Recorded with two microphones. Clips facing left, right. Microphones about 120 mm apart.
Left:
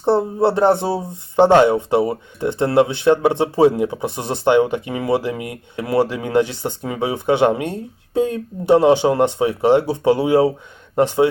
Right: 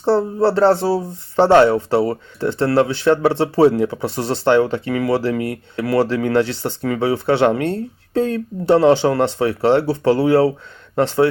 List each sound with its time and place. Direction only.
0.0 s speech: 20° left (ahead or behind)